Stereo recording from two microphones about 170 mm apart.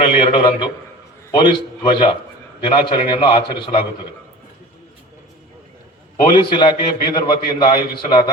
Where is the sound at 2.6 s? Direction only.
30° left (ahead or behind).